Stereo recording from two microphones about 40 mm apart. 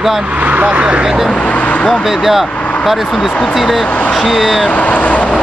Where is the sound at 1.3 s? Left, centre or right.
Left.